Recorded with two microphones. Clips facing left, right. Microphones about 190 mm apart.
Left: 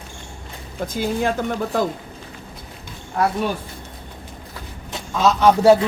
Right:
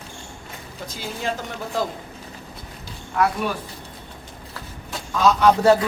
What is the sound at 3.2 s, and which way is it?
Speech, 35° left (ahead or behind).